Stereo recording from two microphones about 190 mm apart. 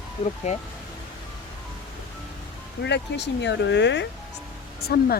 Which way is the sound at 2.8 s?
65° left (ahead or behind).